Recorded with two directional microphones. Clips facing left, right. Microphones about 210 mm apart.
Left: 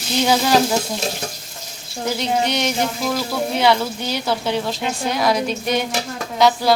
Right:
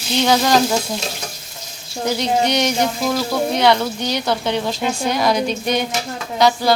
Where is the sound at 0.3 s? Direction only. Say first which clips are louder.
Right 1 dB; 5° left (ahead or behind).